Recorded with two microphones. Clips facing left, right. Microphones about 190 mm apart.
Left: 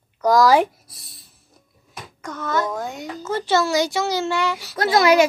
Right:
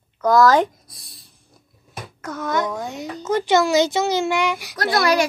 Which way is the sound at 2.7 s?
Centre (ahead or behind).